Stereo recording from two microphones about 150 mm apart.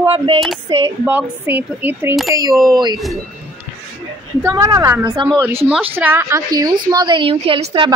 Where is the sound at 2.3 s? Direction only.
25° right (ahead or behind).